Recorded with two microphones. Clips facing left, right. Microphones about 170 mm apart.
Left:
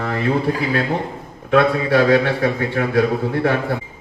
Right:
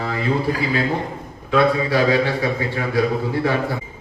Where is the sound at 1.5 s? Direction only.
60° left (ahead or behind).